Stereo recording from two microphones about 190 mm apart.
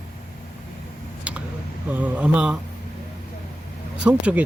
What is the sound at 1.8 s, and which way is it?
Speech, 10° right (ahead or behind).